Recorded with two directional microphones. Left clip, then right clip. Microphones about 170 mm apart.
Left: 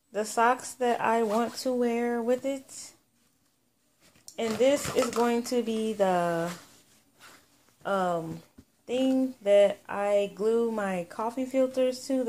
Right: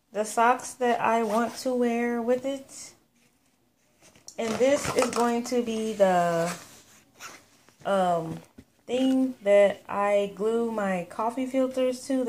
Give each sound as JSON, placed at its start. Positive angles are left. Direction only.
{"t": 0.1, "sound": "speech", "side_deg": 10}
{"t": 4.6, "sound": "speech", "side_deg": 10}
{"t": 7.2, "sound": "a sound", "side_deg": -20}
{"t": 7.8, "sound": "speech", "side_deg": 0}
{"t": 8.8, "sound": "a sound", "side_deg": 0}
{"t": 9.2, "sound": "speech", "side_deg": 0}